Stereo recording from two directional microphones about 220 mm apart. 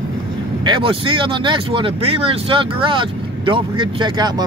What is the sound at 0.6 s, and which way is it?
Speech, 20° right (ahead or behind).